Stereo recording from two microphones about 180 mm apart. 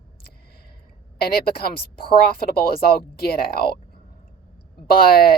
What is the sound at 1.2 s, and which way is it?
Speech, 60° left (ahead or behind).